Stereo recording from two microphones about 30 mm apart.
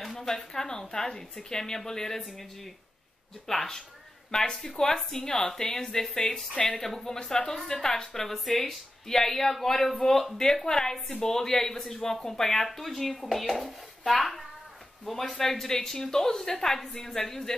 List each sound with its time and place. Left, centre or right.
0.0 s a sound: centre
0.3 s a woman's voice: centre
3.4 s a woman's voice: centre